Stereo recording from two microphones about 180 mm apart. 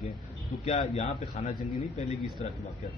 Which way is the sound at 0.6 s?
40° left (ahead or behind).